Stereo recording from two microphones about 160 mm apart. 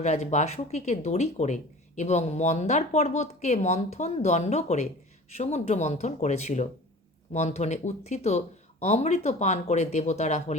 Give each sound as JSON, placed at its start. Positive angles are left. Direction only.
{"t": 0.0, "sound": "speech", "side_deg": 45}